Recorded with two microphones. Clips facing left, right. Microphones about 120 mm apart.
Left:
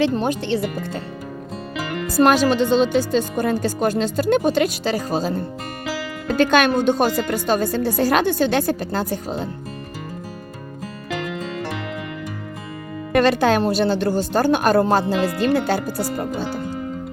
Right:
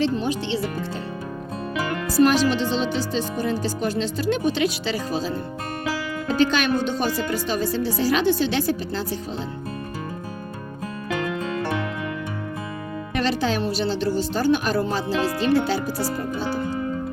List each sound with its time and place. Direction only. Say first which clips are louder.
0.0 s speech: left 3 dB; 55° left (ahead or behind)
2.1 s speech: left 3 dB; 55° left (ahead or behind)
6.3 s speech: left 4 dB; 55° left (ahead or behind)
13.1 s speech: left 7 dB; 55° left (ahead or behind)